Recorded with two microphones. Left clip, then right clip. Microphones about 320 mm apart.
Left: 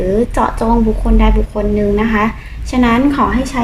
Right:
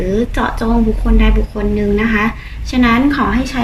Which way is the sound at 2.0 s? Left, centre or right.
Left.